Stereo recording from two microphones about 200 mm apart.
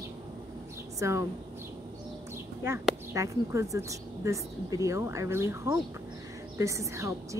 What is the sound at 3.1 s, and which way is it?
A woman's voice, 15° right (ahead or behind).